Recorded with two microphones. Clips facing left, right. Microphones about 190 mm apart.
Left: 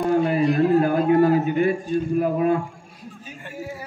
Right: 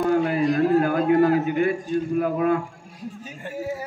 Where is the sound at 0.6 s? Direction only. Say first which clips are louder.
Left 1 dB; 30° left (ahead or behind).